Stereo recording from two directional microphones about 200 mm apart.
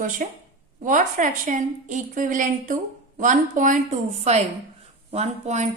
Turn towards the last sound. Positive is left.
turn(degrees=-35)  # may be behind; listen again after turning